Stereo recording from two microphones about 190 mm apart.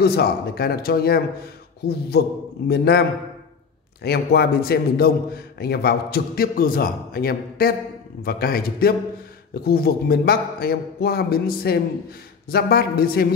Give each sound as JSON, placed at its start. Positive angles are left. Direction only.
{"t": 0.0, "sound": "a man's voice", "side_deg": 55}